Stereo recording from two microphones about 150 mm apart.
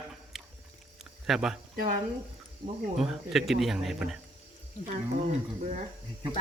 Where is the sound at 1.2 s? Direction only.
Centre (ahead or behind).